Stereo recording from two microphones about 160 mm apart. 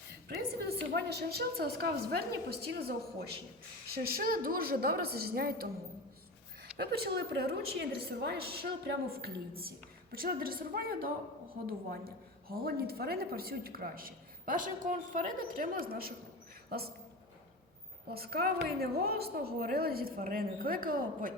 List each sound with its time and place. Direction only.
0.1 s a woman's voice: 80° right
3.9 s a woman's voice: 70° right (ahead or behind)
6.7 s a woman's voice: 80° right
18.1 s a woman's voice: 75° right (ahead or behind)